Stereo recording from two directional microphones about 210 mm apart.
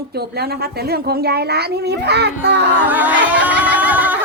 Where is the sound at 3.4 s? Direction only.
10° right (ahead or behind).